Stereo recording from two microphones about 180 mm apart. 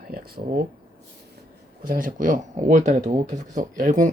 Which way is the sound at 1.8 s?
50° right (ahead or behind).